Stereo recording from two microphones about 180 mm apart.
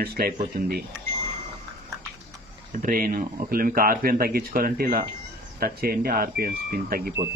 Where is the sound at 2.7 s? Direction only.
50° right (ahead or behind).